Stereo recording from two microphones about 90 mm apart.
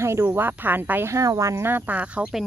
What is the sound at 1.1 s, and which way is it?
Speech, 40° right (ahead or behind).